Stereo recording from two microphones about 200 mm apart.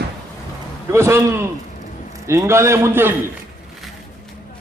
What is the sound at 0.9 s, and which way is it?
A man's voice, 15° right (ahead or behind).